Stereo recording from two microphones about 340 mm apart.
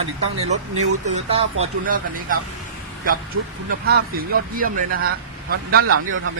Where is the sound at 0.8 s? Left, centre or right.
Centre.